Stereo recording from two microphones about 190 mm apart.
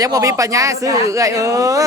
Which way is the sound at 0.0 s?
20° right (ahead or behind).